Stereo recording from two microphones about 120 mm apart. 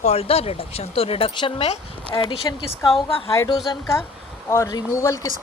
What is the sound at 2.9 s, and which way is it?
Speech, 50° left (ahead or behind).